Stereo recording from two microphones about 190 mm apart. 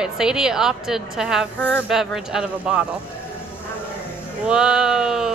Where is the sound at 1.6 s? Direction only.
10° left (ahead or behind).